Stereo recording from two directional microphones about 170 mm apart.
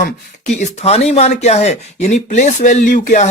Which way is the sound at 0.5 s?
40° left (ahead or behind).